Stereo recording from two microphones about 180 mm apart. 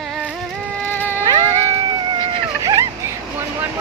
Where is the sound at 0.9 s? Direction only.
10° left (ahead or behind).